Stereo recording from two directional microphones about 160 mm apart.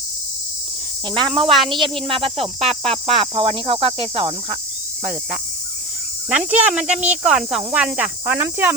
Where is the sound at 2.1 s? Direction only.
35° right (ahead or behind).